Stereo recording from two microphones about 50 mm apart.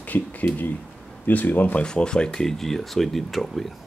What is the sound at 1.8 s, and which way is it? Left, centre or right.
Speech, centre.